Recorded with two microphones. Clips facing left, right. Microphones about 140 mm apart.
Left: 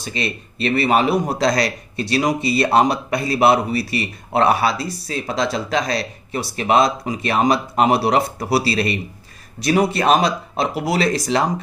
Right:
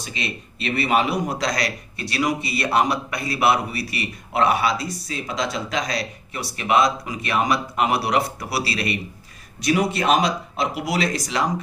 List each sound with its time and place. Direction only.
0.1 s a man's voice: 35° left (ahead or behind)